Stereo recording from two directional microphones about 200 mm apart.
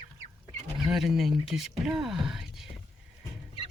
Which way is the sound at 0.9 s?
Centre (ahead or behind).